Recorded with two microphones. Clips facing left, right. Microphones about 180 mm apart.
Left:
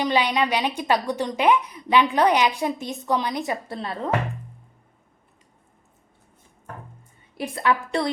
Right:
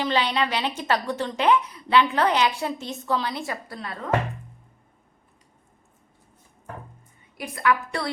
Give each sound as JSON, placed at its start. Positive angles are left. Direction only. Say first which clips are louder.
{"t": 0.0, "sound": "a woman's voice", "louder": "left 2 dB", "side_deg": 15}
{"t": 7.3, "sound": "a woman's voice", "louder": "left 1 dB", "side_deg": 30}